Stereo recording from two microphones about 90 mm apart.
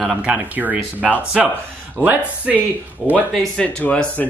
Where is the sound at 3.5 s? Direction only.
15° left (ahead or behind).